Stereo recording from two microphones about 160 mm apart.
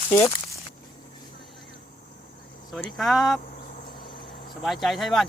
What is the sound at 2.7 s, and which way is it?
Speech, centre (ahead or behind).